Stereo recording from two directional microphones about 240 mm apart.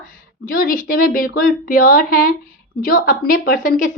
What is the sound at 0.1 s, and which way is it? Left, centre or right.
A woman's voice, left.